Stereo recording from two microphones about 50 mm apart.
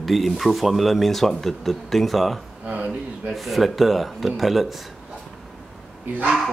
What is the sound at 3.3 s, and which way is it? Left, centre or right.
Speech, centre.